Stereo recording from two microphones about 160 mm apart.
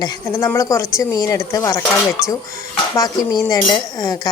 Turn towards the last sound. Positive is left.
turn(degrees=25)  # may be behind; listen again after turning